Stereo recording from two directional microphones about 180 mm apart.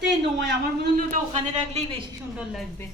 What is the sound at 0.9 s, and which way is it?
A man's voice, 40° right (ahead or behind).